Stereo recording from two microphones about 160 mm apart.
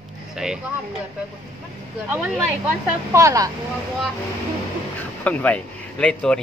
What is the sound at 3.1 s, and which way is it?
Speech, 20° right (ahead or behind).